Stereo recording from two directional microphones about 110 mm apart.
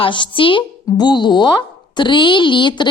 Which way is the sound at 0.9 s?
40° left (ahead or behind).